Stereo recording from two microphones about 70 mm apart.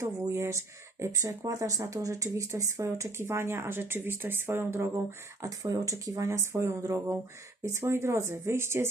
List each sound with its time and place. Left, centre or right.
0.0 s speech: right
5.4 s speech: right